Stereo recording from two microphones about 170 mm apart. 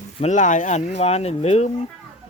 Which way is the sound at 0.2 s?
45° left (ahead or behind).